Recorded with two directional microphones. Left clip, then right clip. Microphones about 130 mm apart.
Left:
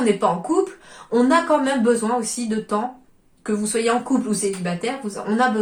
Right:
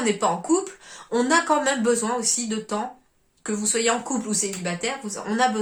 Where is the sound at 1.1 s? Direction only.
25° right (ahead or behind).